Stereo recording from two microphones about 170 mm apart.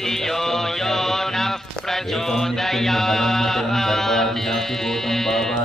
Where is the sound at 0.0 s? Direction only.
Centre (ahead or behind).